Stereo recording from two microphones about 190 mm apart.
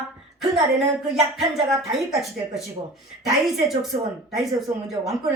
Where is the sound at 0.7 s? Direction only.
Centre (ahead or behind).